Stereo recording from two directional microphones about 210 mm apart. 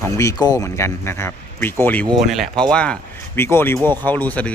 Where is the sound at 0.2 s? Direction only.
15° left (ahead or behind).